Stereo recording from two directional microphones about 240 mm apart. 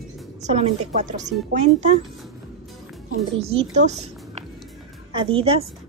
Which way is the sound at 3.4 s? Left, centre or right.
Right.